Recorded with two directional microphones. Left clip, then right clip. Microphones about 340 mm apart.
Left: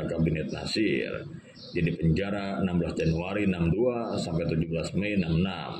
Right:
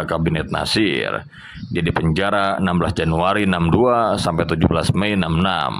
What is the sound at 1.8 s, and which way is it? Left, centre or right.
Speech, centre.